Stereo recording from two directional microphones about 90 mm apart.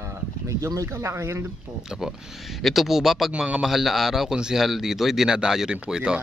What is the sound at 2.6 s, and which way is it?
Speech, centre (ahead or behind).